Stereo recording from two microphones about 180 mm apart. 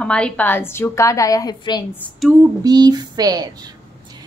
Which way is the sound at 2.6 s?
20° right (ahead or behind).